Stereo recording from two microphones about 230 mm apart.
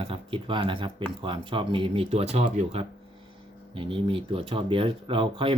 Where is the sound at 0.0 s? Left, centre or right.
Right.